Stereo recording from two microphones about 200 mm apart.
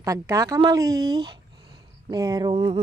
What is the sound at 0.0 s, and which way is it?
Speech, 15° right (ahead or behind).